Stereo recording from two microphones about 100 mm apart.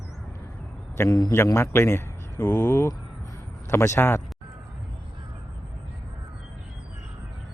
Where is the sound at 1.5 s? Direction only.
25° left (ahead or behind).